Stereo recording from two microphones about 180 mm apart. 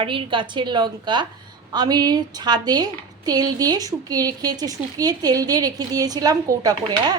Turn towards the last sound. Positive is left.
turn(degrees=-20)  # may be behind; listen again after turning